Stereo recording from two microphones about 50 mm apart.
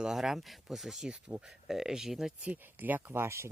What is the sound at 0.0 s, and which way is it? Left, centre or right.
Speech, centre.